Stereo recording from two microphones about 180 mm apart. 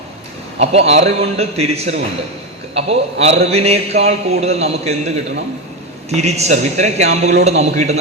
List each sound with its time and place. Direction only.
0.6 s a man's voice: 35° right (ahead or behind)